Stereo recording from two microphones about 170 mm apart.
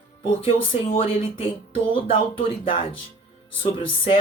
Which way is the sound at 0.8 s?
35° left (ahead or behind).